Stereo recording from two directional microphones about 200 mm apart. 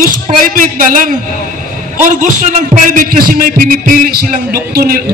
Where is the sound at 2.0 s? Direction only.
40° right (ahead or behind).